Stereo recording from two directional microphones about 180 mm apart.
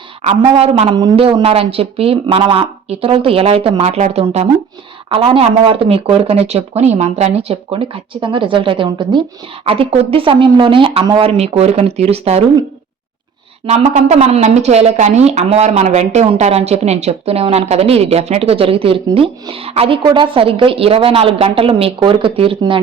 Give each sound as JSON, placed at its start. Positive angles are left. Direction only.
{"t": 0.2, "sound": "speech", "side_deg": -35}
{"t": 13.7, "sound": "speech", "side_deg": -40}